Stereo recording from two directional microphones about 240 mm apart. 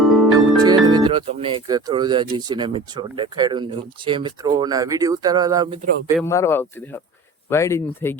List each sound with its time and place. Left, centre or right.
0.0 s music: centre
0.3 s music: centre
2.3 s speech: centre
6.2 s speech: centre